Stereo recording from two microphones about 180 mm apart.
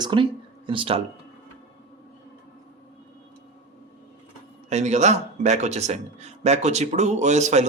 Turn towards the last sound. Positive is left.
turn(degrees=-40)  # may be behind; listen again after turning